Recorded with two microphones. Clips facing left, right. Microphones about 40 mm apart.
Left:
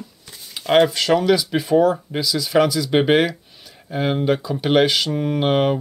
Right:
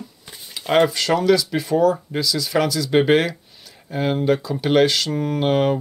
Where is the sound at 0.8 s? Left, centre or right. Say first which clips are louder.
Left 1 dB; centre.